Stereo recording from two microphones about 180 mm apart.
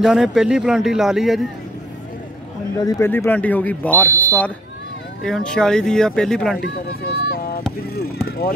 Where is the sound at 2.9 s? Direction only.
15° left (ahead or behind).